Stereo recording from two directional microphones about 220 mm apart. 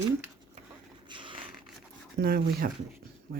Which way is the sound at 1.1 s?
20° right (ahead or behind).